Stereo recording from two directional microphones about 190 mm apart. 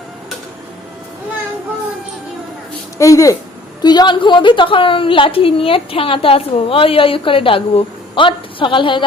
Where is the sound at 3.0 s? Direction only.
15° left (ahead or behind).